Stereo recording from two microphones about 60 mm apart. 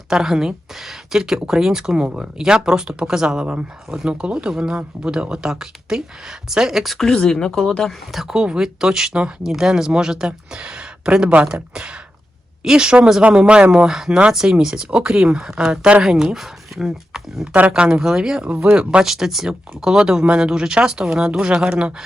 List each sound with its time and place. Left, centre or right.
0.1 s speech: centre
6.9 s speech: centre
8.1 s speech: centre
18.6 s speech: right
18.9 s speech: centre